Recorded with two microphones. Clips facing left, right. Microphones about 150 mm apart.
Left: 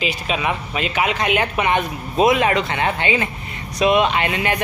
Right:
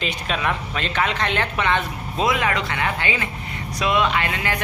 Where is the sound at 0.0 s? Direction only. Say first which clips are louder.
Left 2 dB; 5° left (ahead or behind).